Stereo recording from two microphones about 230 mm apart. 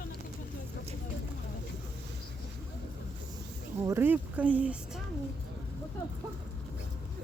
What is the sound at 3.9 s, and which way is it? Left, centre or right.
Speech, centre.